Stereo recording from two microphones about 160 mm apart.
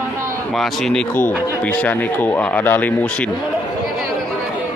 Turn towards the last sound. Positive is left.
turn(degrees=10)  # may be behind; listen again after turning